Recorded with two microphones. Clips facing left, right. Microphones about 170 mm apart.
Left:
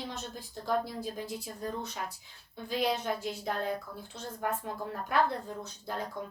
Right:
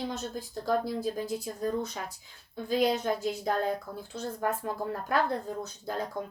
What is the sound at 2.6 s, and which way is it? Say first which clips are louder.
A woman's voice: right 4 dB; 40° right (ahead or behind).